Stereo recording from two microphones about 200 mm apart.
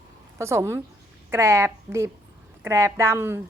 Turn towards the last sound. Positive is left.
turn(degrees=-10)  # may be behind; listen again after turning